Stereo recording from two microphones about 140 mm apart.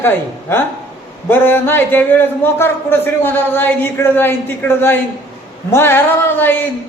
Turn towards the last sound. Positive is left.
turn(degrees=15)  # may be behind; listen again after turning